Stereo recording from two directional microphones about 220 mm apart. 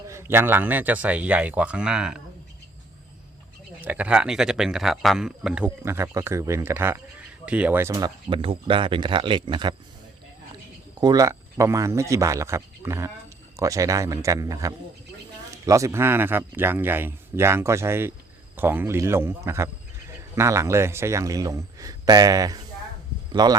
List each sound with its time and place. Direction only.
0.1 s speech: 10° right (ahead or behind)
3.8 s speech: 5° right (ahead or behind)
11.0 s speech: 15° right (ahead or behind)